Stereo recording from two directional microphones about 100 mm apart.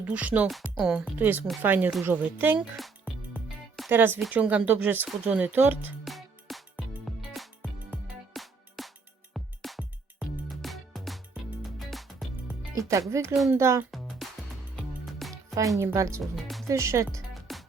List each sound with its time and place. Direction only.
0.0 s speech: 15° right (ahead or behind)
3.8 s speech: 20° right (ahead or behind)
6.1 s music: centre (ahead or behind)
8.3 s music: centre (ahead or behind)
12.7 s speech: 30° right (ahead or behind)
14.2 s music: centre (ahead or behind)
15.8 s speech: 30° right (ahead or behind)
16.3 s music: centre (ahead or behind)
16.6 s speech: 30° right (ahead or behind)
17.5 s music: centre (ahead or behind)